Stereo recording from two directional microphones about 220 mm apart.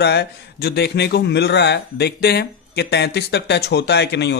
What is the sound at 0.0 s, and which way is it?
A man's voice, 50° left (ahead or behind).